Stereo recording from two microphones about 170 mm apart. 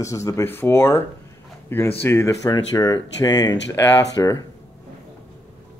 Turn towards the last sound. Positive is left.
turn(degrees=20)  # may be behind; listen again after turning